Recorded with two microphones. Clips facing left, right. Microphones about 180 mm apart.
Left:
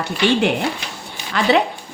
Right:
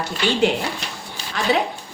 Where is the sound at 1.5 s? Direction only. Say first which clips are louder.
Left 4 dB; 70° left (ahead or behind).